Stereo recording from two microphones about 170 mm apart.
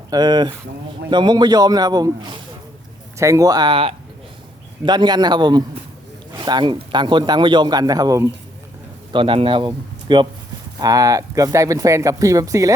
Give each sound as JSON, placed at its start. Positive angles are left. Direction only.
{"t": 0.1, "sound": "speech", "side_deg": -25}
{"t": 9.1, "sound": "speech", "side_deg": -30}